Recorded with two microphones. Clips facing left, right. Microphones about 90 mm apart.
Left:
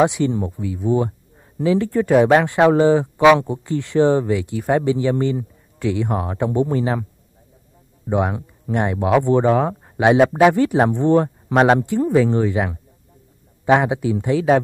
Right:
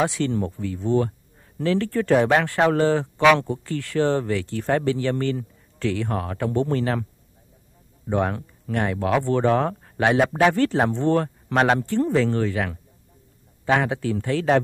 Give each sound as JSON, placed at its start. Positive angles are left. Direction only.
{"t": 0.0, "sound": "speech", "side_deg": 15}
{"t": 8.1, "sound": "speech", "side_deg": 15}